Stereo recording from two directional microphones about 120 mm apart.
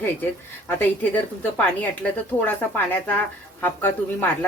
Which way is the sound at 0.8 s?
15° left (ahead or behind).